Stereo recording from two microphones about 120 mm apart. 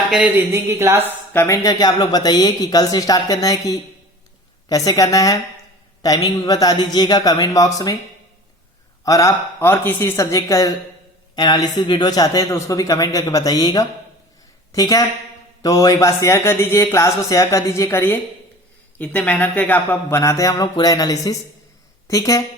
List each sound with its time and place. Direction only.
0.3 s a woman's voice: 20° right (ahead or behind)
1.3 s speech: 20° left (ahead or behind)
1.6 s a man's voice: 30° left (ahead or behind)
9.0 s a man's voice: 25° left (ahead or behind)